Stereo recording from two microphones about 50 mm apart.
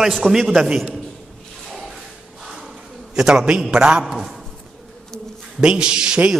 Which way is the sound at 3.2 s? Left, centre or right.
Centre.